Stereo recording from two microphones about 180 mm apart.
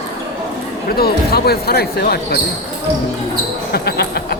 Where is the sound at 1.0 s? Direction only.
60° left (ahead or behind).